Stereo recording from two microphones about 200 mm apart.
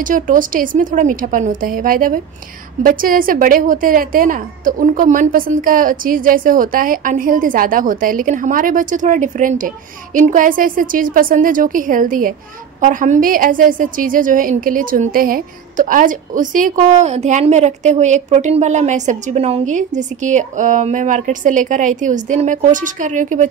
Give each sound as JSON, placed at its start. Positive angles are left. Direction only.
{"t": 0.0, "sound": "a woman's voice", "side_deg": -40}